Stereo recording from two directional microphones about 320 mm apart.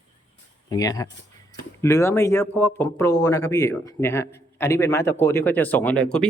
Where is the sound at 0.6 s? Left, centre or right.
Centre.